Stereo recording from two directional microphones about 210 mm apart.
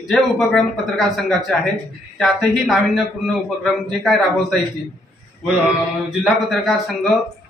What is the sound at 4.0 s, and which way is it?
Speech, centre (ahead or behind).